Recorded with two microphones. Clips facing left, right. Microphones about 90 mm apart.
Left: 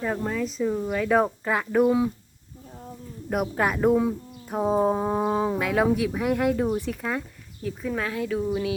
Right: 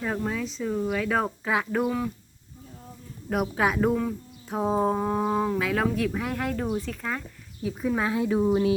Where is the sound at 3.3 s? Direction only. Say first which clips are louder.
Even; centre (ahead or behind).